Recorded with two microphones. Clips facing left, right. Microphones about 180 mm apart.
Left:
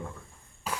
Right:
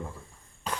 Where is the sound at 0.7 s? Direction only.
5° left (ahead or behind).